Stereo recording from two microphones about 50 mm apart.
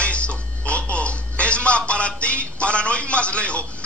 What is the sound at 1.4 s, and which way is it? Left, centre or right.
A man's voice, left.